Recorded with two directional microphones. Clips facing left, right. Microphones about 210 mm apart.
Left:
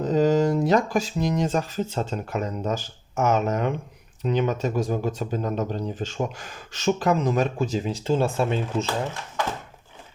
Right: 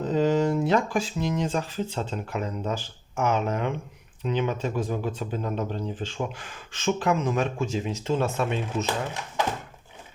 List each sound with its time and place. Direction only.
0.0 s speech: 40° left (ahead or behind)